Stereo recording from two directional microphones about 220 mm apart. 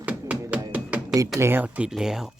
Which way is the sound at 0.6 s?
10° right (ahead or behind).